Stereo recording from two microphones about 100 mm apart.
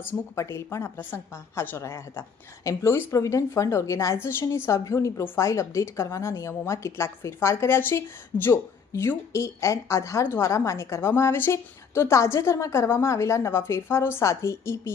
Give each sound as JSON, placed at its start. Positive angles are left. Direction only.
{"t": 0.0, "sound": "a woman's voice", "side_deg": 25}